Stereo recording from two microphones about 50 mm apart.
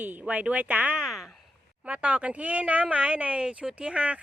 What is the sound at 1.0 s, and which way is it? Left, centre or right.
Speech, centre.